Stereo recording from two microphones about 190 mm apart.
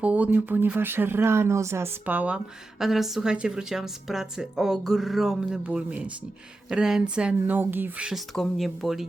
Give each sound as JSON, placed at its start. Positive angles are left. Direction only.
{"t": 0.0, "sound": "speech", "side_deg": -5}